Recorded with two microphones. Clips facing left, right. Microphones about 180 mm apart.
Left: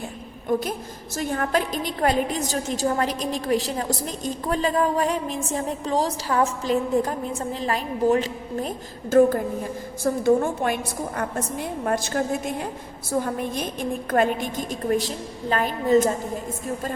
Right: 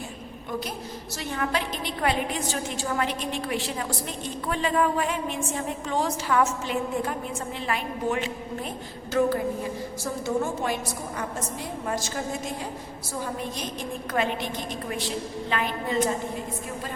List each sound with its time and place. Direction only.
1.1 s a woman's voice: 45° left (ahead or behind)
11.9 s a woman's voice: 55° left (ahead or behind)